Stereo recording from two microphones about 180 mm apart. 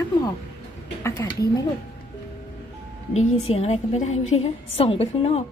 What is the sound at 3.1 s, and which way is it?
A woman's voice, 35° left (ahead or behind).